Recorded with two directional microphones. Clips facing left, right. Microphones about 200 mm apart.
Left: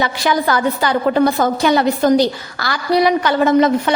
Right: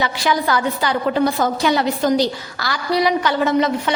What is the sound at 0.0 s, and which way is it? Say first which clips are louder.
A woman's voice: left 2 dB; 50° left (ahead or behind).